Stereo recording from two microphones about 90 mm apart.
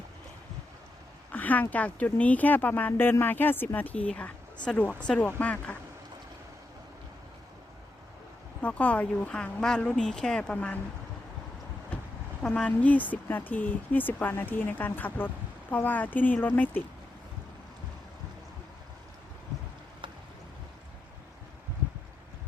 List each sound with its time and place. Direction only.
1.3 s a sound: 20° left (ahead or behind)
1.7 s speech: 15° left (ahead or behind)
8.6 s speech: 15° left (ahead or behind)
12.4 s speech: 10° left (ahead or behind)